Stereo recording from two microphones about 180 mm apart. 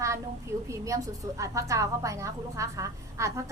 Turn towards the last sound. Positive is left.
turn(degrees=-15)  # may be behind; listen again after turning